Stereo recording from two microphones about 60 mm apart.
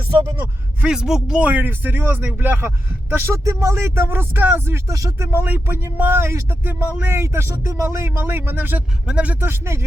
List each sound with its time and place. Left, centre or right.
0.9 s speech: centre
1.4 s speech: right
3.4 s speech: right
7.9 s speech: right
9.0 s speech: right
9.4 s speech: right